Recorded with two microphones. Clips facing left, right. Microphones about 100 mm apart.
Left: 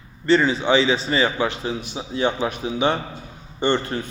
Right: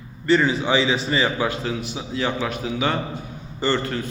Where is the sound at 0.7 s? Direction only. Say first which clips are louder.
Left 2 dB; 25° left (ahead or behind).